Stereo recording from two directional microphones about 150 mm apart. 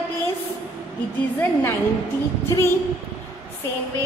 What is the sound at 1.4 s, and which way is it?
Speech, 15° left (ahead or behind).